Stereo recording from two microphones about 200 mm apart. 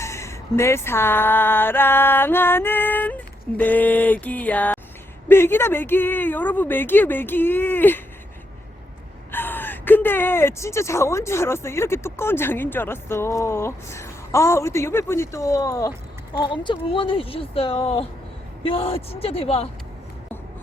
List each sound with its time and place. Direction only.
0.0 s a sound: 15° left (ahead or behind)
5.3 s speech: 10° left (ahead or behind)
9.3 s speech: 10° left (ahead or behind); by 19.6 s 30° left (ahead or behind)